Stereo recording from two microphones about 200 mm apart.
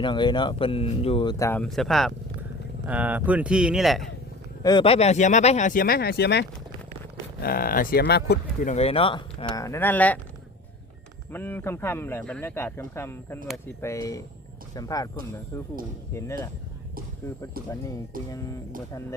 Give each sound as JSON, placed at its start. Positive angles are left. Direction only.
{"t": 0.0, "sound": "speech", "side_deg": 25}
{"t": 1.6, "sound": "speech", "side_deg": 0}
{"t": 4.6, "sound": "speech", "side_deg": 25}
{"t": 8.6, "sound": "speech", "side_deg": 30}
{"t": 11.3, "sound": "speech", "side_deg": 10}
{"t": 18.3, "sound": "speech", "side_deg": 15}